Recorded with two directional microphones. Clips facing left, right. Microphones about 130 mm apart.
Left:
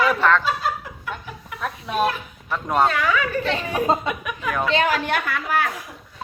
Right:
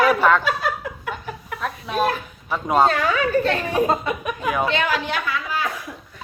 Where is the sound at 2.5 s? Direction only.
5° right (ahead or behind).